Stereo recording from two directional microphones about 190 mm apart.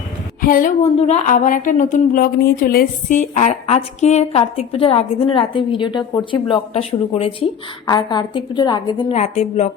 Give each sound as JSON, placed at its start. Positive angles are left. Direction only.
{"t": 0.4, "sound": "a woman's voice", "side_deg": 45}
{"t": 0.8, "sound": "a woman's voice", "side_deg": 35}
{"t": 9.1, "sound": "speech", "side_deg": 35}